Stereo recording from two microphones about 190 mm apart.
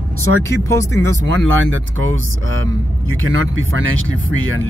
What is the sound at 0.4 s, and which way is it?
Speech, 15° left (ahead or behind).